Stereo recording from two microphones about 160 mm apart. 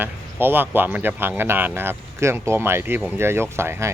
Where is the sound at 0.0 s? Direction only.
15° right (ahead or behind).